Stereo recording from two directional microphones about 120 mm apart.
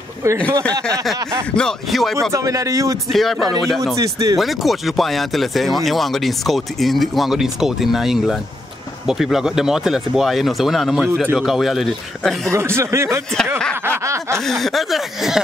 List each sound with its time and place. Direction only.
1.5 s speech: 5° left (ahead or behind)
2.3 s speech: 30° right (ahead or behind)
3.1 s speech: centre (ahead or behind)
3.9 s speech: 30° right (ahead or behind)
4.4 s speech: centre (ahead or behind)
12.5 s speech: 20° right (ahead or behind)
13.8 s snicker: 20° right (ahead or behind)
14.4 s speech: centre (ahead or behind)